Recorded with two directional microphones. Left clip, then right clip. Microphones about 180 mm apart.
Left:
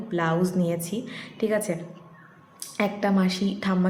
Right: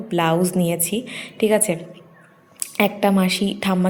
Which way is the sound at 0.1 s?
25° right (ahead or behind).